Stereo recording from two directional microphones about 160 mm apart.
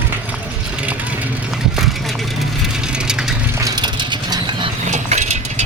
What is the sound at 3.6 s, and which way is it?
Crushing, 25° right (ahead or behind).